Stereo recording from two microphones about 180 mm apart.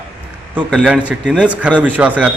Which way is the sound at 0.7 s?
Centre (ahead or behind).